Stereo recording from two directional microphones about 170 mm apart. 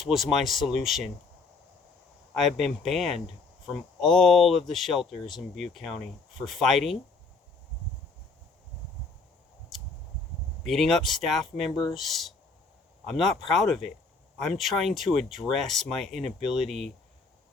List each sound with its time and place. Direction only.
0.0 s speech: centre (ahead or behind)
2.3 s speech: centre (ahead or behind)
10.7 s speech: centre (ahead or behind)
11.7 s speech: 25° left (ahead or behind)
11.9 s speech: centre (ahead or behind)